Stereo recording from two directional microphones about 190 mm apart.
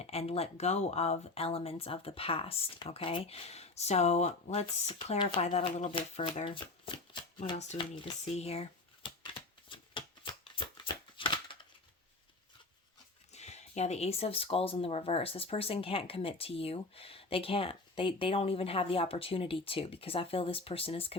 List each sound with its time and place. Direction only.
0.0 s speech: 30° left (ahead or behind)
9.0 s a sound: 25° left (ahead or behind)
13.3 s speech: 35° left (ahead or behind)